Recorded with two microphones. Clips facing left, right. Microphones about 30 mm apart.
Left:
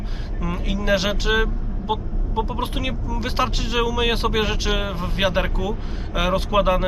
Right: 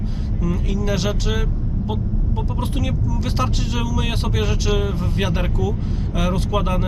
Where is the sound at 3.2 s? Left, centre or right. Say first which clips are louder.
Left 3 dB; centre.